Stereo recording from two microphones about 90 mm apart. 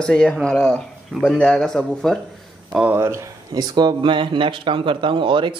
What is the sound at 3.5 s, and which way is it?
Speech, 50° right (ahead or behind).